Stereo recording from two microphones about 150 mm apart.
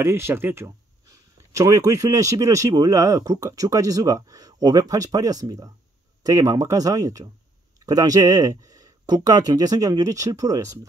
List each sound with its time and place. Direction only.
0.0 s speech: 15° right (ahead or behind)